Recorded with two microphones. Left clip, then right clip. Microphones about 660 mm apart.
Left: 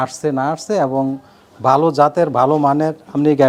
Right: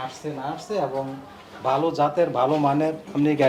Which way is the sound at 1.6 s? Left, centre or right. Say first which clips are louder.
Left 9 dB; left.